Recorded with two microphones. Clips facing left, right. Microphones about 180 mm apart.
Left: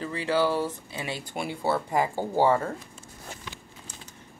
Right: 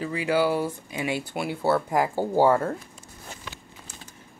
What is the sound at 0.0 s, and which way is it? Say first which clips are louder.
Speech: right 2 dB; 10° right (ahead or behind).